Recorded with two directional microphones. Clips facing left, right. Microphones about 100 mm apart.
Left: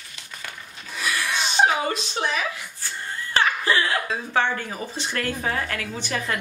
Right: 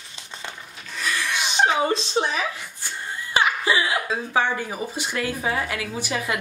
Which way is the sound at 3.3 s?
15° right (ahead or behind).